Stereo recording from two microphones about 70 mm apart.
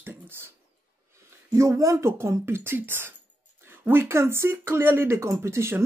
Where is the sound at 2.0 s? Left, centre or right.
Right.